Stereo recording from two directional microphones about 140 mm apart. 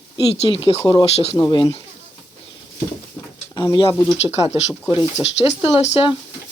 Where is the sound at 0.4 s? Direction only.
40° left (ahead or behind).